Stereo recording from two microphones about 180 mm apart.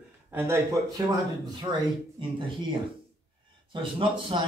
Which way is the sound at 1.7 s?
30° right (ahead or behind).